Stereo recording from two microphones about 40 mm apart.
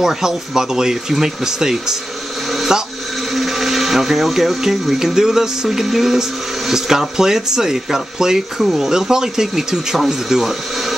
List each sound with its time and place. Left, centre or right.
0.0 s speech: centre
3.3 s speech: centre